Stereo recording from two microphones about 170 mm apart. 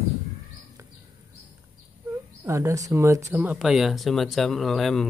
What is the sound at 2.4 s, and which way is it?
Speech, 15° right (ahead or behind).